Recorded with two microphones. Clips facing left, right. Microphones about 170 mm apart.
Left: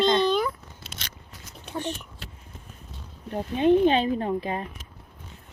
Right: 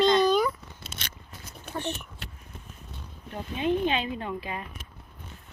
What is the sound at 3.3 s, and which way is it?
Speech, 40° left (ahead or behind).